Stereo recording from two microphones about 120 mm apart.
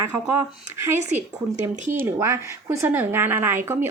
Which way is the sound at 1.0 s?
75° right (ahead or behind).